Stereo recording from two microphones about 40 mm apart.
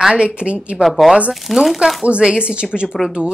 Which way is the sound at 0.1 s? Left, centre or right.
Right.